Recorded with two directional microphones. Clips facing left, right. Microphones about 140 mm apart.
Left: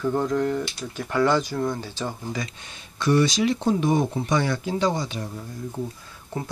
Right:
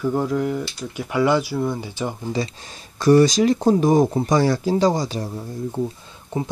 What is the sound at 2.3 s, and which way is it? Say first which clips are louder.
Speech: right 7 dB; 35° right (ahead or behind).